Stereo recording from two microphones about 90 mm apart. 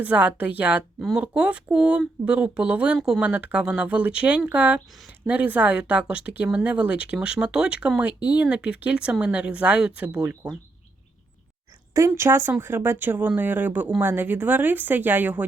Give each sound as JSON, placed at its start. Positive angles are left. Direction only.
{"t": 0.0, "sound": "speech", "side_deg": -15}
{"t": 11.9, "sound": "speech", "side_deg": -35}